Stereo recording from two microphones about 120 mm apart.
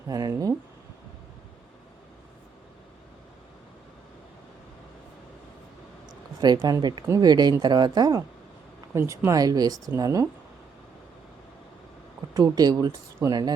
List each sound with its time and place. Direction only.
0.1 s speech: 30° right (ahead or behind)
6.4 s speech: 35° right (ahead or behind)
8.9 s speech: 20° right (ahead or behind)
12.3 s speech: 35° right (ahead or behind)